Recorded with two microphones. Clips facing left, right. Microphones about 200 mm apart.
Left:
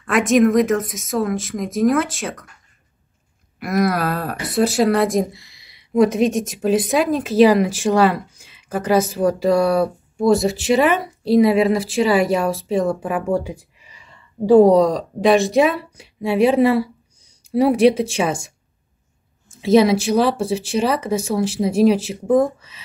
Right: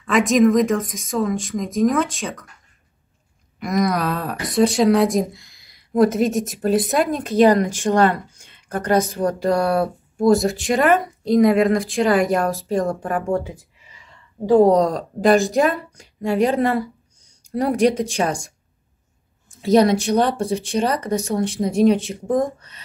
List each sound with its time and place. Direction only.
0.0 s speech: centre (ahead or behind)
3.5 s a woman's voice: 5° left (ahead or behind)
14.8 s speech: centre (ahead or behind)
19.6 s speech: centre (ahead or behind)